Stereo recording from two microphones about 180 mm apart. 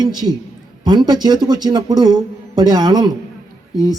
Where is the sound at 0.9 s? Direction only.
25° right (ahead or behind).